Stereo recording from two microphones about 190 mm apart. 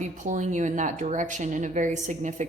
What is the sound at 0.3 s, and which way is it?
Speech, 40° right (ahead or behind).